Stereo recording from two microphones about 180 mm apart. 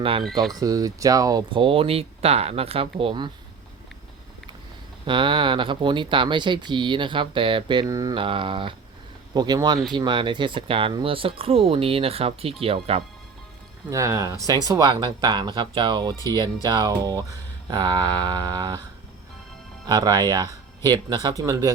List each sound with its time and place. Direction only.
0.0 s speech: 30° right (ahead or behind)
0.5 s speech: 20° right (ahead or behind)
5.0 s speech: 25° right (ahead or behind)
13.9 s speech: 15° right (ahead or behind)
16.1 s speech: 15° left (ahead or behind)
16.6 s speech: 25° right (ahead or behind)
19.9 s speech: 20° right (ahead or behind)